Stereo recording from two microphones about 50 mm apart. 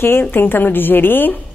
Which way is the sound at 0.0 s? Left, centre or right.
Left.